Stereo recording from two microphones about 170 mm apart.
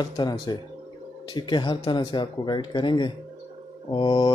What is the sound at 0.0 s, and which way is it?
Speech, 25° left (ahead or behind).